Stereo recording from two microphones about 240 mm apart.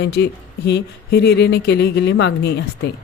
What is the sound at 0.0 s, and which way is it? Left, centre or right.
Speech, left.